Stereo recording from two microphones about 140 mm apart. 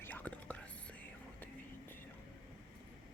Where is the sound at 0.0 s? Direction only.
10° left (ahead or behind).